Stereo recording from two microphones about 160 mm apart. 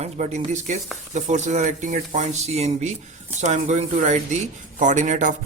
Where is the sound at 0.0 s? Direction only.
45° right (ahead or behind).